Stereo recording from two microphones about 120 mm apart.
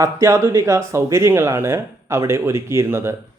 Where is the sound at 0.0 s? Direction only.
25° right (ahead or behind).